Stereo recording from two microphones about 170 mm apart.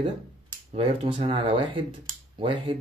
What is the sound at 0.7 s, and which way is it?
Speech, 35° right (ahead or behind).